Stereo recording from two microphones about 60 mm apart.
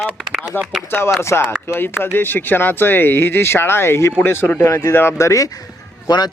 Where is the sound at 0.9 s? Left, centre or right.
Left.